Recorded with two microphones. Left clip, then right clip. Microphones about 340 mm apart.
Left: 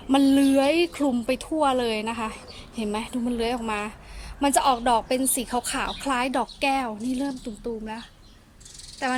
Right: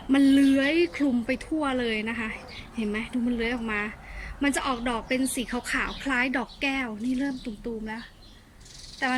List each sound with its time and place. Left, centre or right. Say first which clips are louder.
0.1 s a woman's voice: left 1 dB; centre